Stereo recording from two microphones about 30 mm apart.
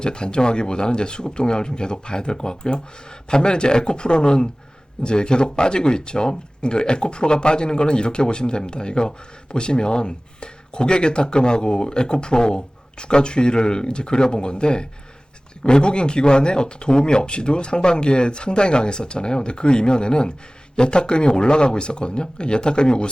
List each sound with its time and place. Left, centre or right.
0.0 s speech: left